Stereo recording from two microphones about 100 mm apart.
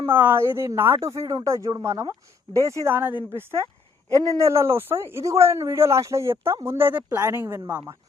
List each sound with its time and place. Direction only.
0.0 s speech: 20° right (ahead or behind)